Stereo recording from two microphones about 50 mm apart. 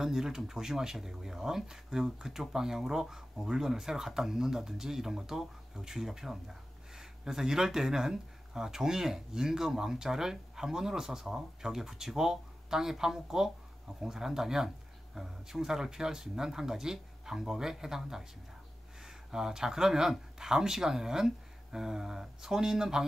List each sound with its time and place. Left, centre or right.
0.0 s speech: centre